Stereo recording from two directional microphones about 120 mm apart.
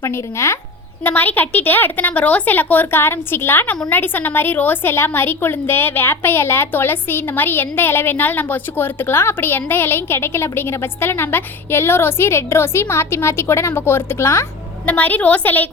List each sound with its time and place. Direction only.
0.0 s a woman's voice: 20° left (ahead or behind)